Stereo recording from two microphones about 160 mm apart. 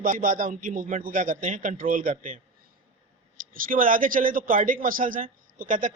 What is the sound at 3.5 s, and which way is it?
A man's voice, 60° right (ahead or behind).